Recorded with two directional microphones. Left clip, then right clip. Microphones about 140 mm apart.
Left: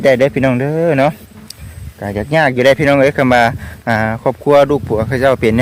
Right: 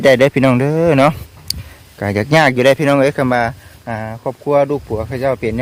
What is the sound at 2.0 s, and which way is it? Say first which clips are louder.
Speech: right 1 dB; 20° right (ahead or behind).